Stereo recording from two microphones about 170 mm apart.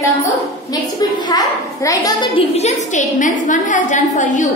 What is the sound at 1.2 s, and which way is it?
A child's voice, 20° left (ahead or behind).